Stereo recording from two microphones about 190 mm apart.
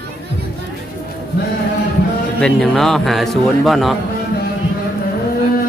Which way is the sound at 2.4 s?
Centre (ahead or behind).